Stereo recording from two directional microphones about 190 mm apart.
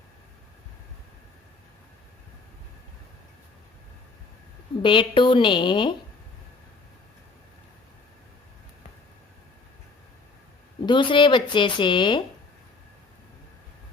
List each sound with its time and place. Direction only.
4.8 s speech: 25° left (ahead or behind)
10.8 s speech: 25° left (ahead or behind)